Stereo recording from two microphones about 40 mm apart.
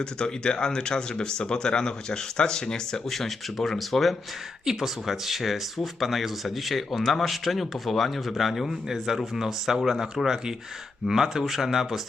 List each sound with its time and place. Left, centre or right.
0.0 s speech: left
3.1 s speech: centre
4.6 s speech: centre